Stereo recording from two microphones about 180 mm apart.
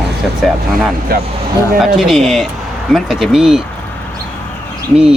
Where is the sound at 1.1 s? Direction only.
60° right (ahead or behind).